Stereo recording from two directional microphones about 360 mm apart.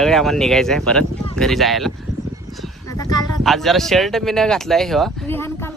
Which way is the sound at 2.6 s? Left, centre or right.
Centre.